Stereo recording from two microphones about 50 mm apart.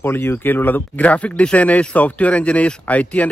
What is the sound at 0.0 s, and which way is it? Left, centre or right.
Speech, left.